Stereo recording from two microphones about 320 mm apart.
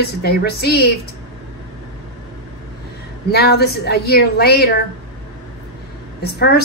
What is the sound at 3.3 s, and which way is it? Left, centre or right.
A woman's voice, left.